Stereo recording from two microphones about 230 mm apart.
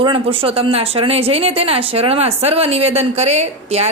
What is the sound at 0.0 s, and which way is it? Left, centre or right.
A woman's voice, right.